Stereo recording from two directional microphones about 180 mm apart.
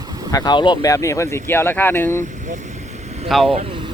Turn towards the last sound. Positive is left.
turn(degrees=-30)  # may be behind; listen again after turning